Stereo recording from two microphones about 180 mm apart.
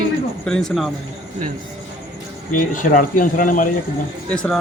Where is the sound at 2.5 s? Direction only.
45° left (ahead or behind).